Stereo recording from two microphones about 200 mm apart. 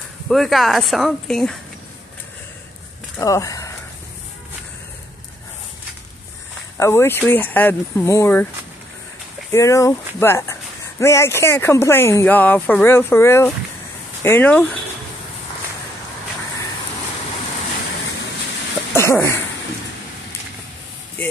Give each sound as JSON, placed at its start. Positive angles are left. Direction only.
{"t": 0.3, "sound": "speech", "side_deg": 0}
{"t": 3.2, "sound": "speech", "side_deg": 15}
{"t": 6.8, "sound": "speech", "side_deg": 10}
{"t": 9.5, "sound": "speech", "side_deg": 15}
{"t": 18.9, "sound": "dog", "side_deg": 15}
{"t": 21.2, "sound": "vehicle", "side_deg": 5}